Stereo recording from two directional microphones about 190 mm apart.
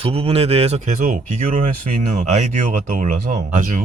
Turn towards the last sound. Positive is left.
turn(degrees=-45)  # may be behind; listen again after turning